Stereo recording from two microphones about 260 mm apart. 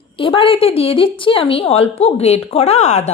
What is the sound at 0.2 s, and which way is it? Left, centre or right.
A woman's voice, centre.